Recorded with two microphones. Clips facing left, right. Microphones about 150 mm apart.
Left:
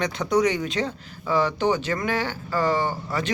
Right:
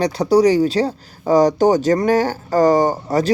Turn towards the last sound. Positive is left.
turn(degrees=-40)  # may be behind; listen again after turning